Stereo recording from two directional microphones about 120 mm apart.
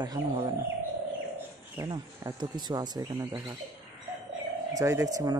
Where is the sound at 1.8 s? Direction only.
20° right (ahead or behind).